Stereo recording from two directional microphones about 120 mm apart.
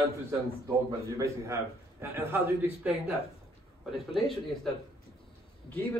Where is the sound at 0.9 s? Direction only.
25° right (ahead or behind).